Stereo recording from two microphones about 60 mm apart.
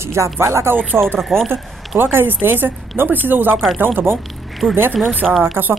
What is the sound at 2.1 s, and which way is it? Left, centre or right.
Speech, right.